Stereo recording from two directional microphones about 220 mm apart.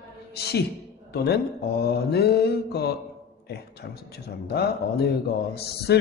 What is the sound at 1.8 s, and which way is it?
Speech, 45° left (ahead or behind).